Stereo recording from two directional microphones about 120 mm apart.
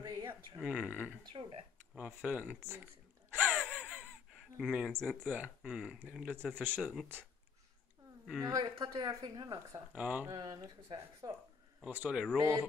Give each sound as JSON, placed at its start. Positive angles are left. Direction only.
{"t": 0.0, "sound": "a sound", "side_deg": -30}
{"t": 0.6, "sound": "speech", "side_deg": -5}
{"t": 1.3, "sound": "speech", "side_deg": -50}
{"t": 2.0, "sound": "speech", "side_deg": -10}
{"t": 3.5, "sound": "crow", "side_deg": 5}
{"t": 4.6, "sound": "speech", "side_deg": 0}
{"t": 6.8, "sound": "speech", "side_deg": -5}
{"t": 8.5, "sound": "speech", "side_deg": -35}
{"t": 9.9, "sound": "speech", "side_deg": -10}
{"t": 10.2, "sound": "speech", "side_deg": -35}
{"t": 11.8, "sound": "speech", "side_deg": -10}
{"t": 12.4, "sound": "speech", "side_deg": -25}